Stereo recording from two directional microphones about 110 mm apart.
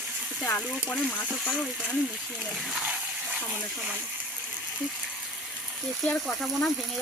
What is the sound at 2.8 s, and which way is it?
Water, 15° right (ahead or behind).